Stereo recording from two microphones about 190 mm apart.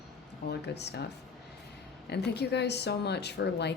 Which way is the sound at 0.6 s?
60° left (ahead or behind).